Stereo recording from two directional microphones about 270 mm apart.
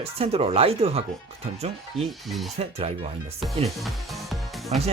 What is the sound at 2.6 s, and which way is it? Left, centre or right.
Speech, right.